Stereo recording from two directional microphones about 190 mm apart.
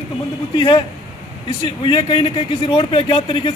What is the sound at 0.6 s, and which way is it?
A man's voice, 25° left (ahead or behind).